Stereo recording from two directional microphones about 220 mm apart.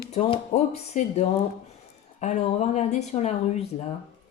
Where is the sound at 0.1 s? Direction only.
30° left (ahead or behind).